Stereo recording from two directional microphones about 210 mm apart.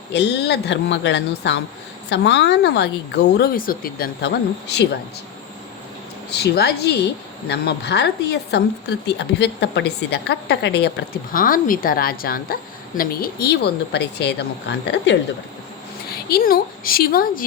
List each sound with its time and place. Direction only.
0.1 s a woman's voice: 55° left (ahead or behind)
6.3 s a woman's voice: 50° left (ahead or behind)
16.3 s a woman's voice: 45° left (ahead or behind)